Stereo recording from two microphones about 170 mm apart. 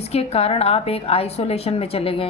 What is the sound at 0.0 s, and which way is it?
A woman's voice, 35° left (ahead or behind).